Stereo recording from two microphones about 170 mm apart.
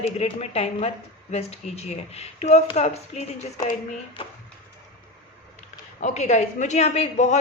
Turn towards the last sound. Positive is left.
turn(degrees=40)  # may be behind; listen again after turning